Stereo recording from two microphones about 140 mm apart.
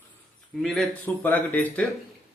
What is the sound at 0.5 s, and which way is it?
A man's voice, centre (ahead or behind).